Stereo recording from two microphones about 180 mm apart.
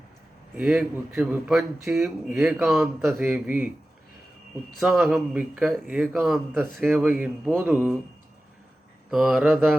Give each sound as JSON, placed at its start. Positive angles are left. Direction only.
{"t": 0.5, "sound": "a man's voice", "side_deg": -5}
{"t": 4.8, "sound": "a man's voice", "side_deg": 0}
{"t": 9.0, "sound": "a man's voice", "side_deg": 0}